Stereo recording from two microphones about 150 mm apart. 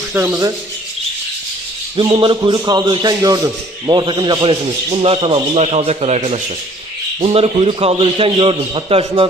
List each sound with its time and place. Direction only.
0.1 s rub: 15° right (ahead or behind)
2.0 s a man's voice: 30° right (ahead or behind)
4.9 s a man's voice: 40° right (ahead or behind)